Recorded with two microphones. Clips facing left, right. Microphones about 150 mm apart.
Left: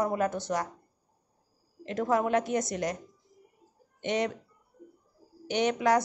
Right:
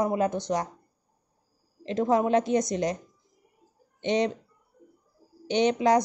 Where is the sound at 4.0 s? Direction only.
25° right (ahead or behind).